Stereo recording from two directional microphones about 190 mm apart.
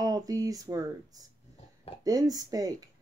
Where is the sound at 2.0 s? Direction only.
20° right (ahead or behind).